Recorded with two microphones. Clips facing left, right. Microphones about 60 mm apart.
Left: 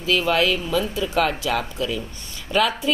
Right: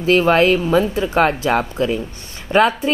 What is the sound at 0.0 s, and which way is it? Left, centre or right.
A woman's voice, right.